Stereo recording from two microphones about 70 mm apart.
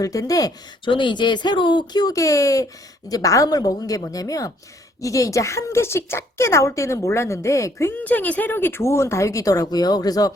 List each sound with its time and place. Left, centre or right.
0.0 s a woman's voice: left
1.1 s speech: left
2.1 s a woman's voice: left
7.9 s speech: left